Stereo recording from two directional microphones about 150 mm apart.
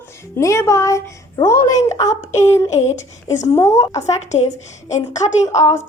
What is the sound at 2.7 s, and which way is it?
Speech, 50° left (ahead or behind).